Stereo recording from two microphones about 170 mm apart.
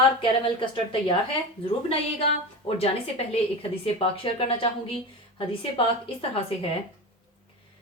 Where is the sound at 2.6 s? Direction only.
35° left (ahead or behind).